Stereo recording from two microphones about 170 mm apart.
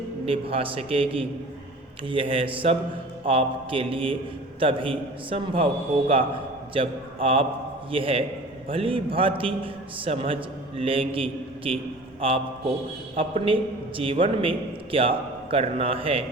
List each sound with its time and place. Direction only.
0.3 s a man's voice: 35° right (ahead or behind)
6.7 s a man's voice: 35° right (ahead or behind)